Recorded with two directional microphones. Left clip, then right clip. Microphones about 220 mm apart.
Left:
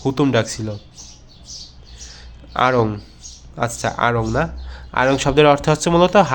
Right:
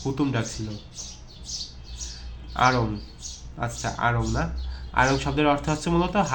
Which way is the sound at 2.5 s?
50° left (ahead or behind).